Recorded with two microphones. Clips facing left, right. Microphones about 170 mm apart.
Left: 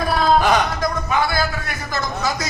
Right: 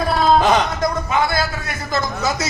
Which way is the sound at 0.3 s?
25° right (ahead or behind).